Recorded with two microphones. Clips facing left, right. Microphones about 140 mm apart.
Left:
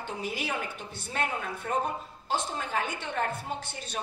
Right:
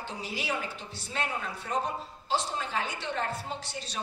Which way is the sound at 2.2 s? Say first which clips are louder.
Even; 50° left (ahead or behind).